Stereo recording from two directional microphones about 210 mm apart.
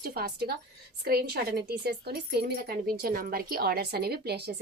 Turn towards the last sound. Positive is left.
turn(degrees=-50)  # may be behind; listen again after turning